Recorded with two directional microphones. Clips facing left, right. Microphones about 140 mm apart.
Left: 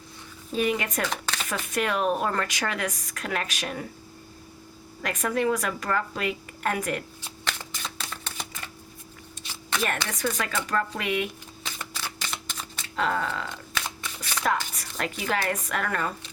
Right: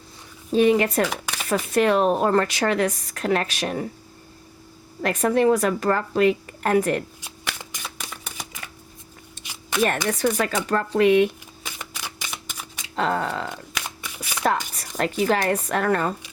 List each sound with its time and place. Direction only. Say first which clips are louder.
0.5 s speech: right 9 dB; 35° right (ahead or behind)
1.1 s a sound: right 1 dB; 10° right (ahead or behind)
1.5 s speech: right 9 dB; 35° right (ahead or behind)
5.0 s speech: right 7 dB; 30° right (ahead or behind)
7.2 s shuffling cards: even; 15° right (ahead or behind)
9.4 s a sound: right 5 dB; 15° right (ahead or behind)
10.2 s speech: right 6 dB; 35° right (ahead or behind)
11.6 s camera: right 1 dB; 15° right (ahead or behind)
13.0 s speech: right 3 dB; 35° right (ahead or behind)
13.7 s shuffling cards: even; 10° right (ahead or behind)
14.8 s speech: right 8 dB; 40° right (ahead or behind)